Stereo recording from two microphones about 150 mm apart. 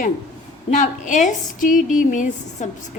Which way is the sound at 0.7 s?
55° left (ahead or behind).